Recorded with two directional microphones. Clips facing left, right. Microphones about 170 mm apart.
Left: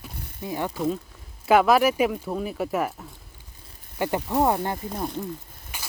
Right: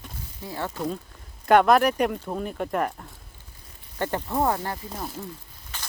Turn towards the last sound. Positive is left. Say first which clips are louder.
# even
turn(degrees=10)  # may be behind; listen again after turning